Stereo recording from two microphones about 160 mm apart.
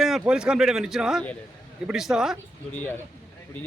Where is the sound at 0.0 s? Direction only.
5° right (ahead or behind).